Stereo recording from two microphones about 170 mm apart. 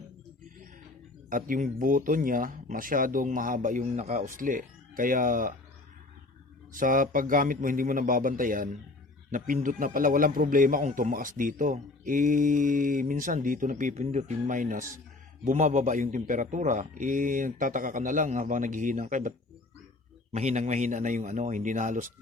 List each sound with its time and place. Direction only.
1.3 s speech: 50° right (ahead or behind)
6.7 s speech: 55° right (ahead or behind)
20.3 s speech: 40° right (ahead or behind)